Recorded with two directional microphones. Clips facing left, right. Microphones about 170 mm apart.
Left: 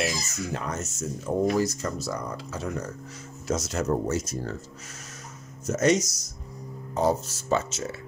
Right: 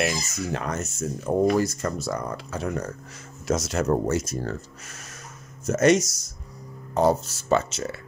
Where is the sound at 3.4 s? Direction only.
80° right.